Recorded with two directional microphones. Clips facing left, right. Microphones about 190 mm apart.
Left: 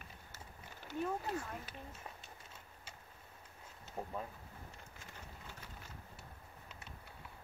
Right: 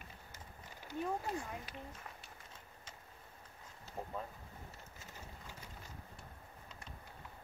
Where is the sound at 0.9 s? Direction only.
10° right (ahead or behind).